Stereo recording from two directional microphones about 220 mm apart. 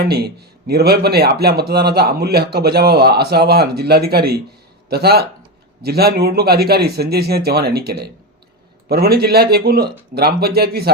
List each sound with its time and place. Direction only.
0.0 s a man's voice: 45° right (ahead or behind)